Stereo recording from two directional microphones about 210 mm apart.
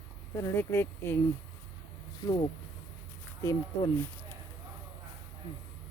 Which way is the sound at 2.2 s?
20° left (ahead or behind).